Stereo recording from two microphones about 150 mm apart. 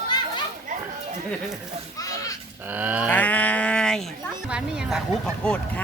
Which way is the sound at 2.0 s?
20° left (ahead or behind).